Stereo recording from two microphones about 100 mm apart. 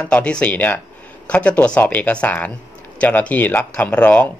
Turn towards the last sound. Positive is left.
turn(degrees=15)  # may be behind; listen again after turning